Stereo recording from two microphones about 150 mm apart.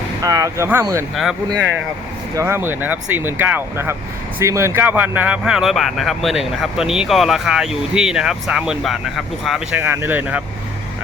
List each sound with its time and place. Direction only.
0.2 s speech: 25° right (ahead or behind)
1.1 s speech: centre (ahead or behind)
2.3 s speech: 20° right (ahead or behind); by 9.6 s centre (ahead or behind)
9.7 s speech: 15° right (ahead or behind)